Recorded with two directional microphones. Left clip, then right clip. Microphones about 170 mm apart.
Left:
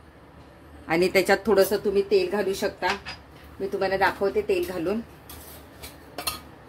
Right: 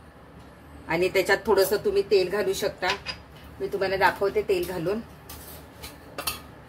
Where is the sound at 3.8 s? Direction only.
35° left (ahead or behind).